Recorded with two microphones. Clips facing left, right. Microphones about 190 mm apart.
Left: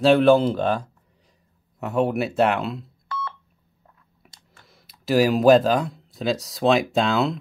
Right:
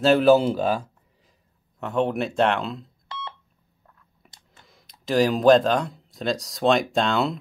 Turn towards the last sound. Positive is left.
turn(degrees=0)  # may be behind; listen again after turning